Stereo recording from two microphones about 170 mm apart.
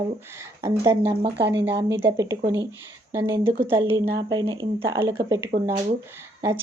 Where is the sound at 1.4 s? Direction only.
90° right.